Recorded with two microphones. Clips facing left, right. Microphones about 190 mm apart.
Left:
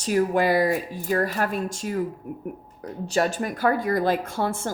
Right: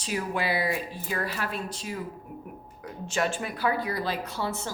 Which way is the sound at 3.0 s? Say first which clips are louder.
Left 5 dB; 40° left (ahead or behind).